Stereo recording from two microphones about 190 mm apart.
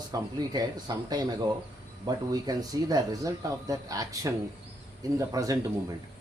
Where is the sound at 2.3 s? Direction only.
20° right (ahead or behind).